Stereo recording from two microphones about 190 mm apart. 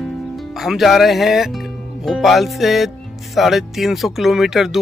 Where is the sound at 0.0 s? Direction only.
Centre (ahead or behind).